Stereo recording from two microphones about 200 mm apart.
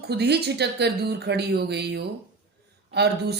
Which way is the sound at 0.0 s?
55° right (ahead or behind).